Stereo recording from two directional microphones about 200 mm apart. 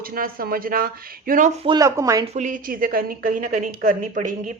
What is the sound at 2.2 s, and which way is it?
A woman's voice, 35° right (ahead or behind).